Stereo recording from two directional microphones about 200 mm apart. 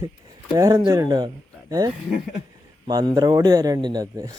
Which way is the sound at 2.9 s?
20° right (ahead or behind).